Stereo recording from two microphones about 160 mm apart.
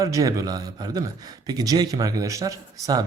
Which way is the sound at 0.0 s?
20° right (ahead or behind).